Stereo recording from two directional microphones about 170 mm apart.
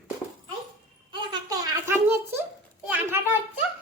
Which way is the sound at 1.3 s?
20° right (ahead or behind).